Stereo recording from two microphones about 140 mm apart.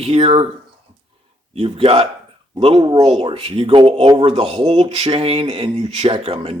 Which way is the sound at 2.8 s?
30° right (ahead or behind).